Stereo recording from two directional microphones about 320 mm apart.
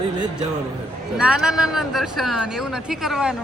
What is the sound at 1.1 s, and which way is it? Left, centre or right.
Speech, centre.